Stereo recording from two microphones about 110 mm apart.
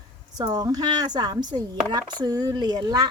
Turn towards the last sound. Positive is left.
turn(degrees=-40)  # may be behind; listen again after turning